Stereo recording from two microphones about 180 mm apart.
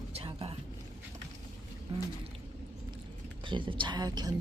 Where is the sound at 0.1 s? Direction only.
35° right (ahead or behind).